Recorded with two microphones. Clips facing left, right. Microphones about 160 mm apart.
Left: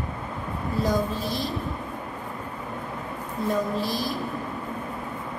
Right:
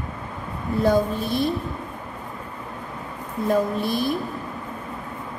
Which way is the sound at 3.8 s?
55° right (ahead or behind).